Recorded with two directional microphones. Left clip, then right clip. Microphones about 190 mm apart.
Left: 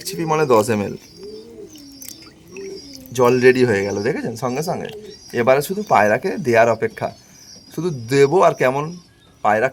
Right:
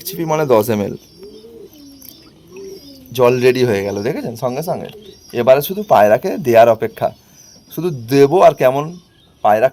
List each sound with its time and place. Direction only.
0.0 s speech: 35° right (ahead or behind)
3.1 s speech: 30° right (ahead or behind)